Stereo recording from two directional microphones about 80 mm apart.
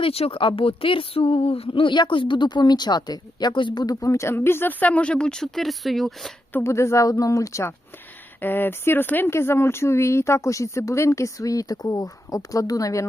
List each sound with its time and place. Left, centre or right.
0.3 s speech: left
3.8 s speech: left; by 6.3 s centre
6.6 s speech: left
8.4 s speech: left